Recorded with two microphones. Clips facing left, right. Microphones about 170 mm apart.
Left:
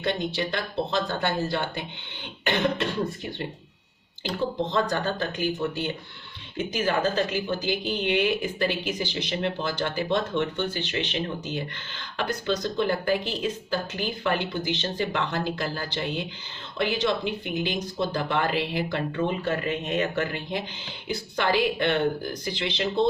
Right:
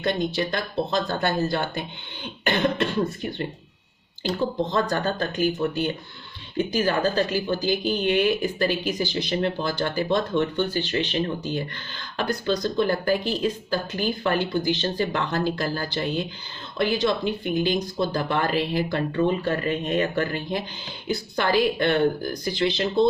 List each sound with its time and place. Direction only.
0.0 s a woman's voice: 40° right (ahead or behind)
2.4 s throat clearing: 45° right (ahead or behind)
4.7 s a woman's voice: 45° right (ahead or behind)